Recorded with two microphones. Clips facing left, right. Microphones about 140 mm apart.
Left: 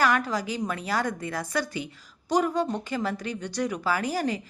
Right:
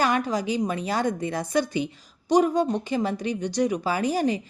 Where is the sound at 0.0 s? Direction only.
20° right (ahead or behind).